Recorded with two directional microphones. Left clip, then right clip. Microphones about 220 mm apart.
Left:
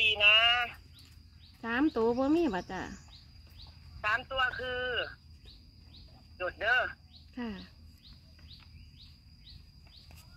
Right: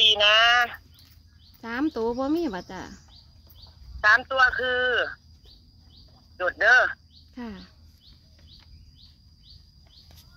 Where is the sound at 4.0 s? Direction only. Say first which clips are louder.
Right 12 dB; 45° right (ahead or behind).